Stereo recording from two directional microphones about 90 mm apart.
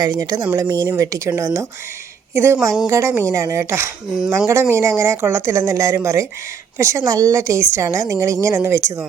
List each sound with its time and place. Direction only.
0.0 s a woman's voice: 40° right (ahead or behind)
2.3 s a woman's voice: 25° right (ahead or behind)